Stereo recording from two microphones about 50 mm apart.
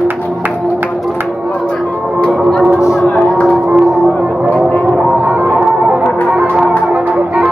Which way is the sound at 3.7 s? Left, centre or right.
Centre.